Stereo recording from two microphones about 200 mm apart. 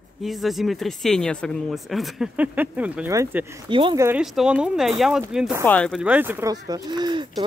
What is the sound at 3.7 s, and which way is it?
Speech, 25° right (ahead or behind).